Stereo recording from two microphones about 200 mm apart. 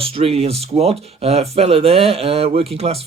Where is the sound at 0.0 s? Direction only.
30° right (ahead or behind).